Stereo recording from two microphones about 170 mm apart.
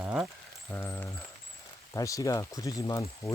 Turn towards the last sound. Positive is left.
turn(degrees=20)  # may be behind; listen again after turning